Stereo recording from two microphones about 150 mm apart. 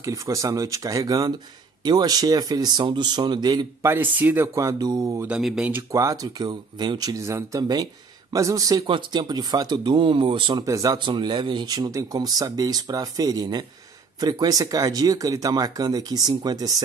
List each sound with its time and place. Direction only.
0.0 s speech: 20° right (ahead or behind)
5.2 s speech: 5° right (ahead or behind)
5.8 s speech: 20° right (ahead or behind)